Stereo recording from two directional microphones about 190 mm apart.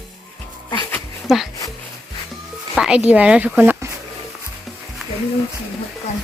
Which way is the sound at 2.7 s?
5° right (ahead or behind).